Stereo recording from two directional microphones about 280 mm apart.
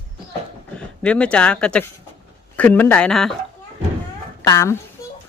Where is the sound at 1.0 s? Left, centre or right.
Centre.